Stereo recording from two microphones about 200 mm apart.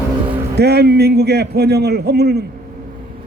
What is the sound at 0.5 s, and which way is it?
A man's voice, 55° right (ahead or behind).